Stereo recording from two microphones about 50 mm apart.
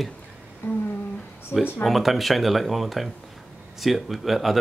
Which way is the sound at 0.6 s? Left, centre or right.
Left.